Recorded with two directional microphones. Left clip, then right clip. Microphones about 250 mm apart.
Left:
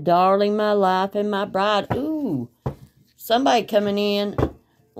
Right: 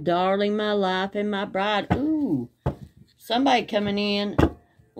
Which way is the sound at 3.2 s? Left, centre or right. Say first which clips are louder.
Left 3 dB; left.